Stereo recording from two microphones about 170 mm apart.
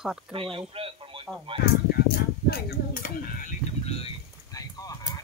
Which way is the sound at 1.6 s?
65° left (ahead or behind).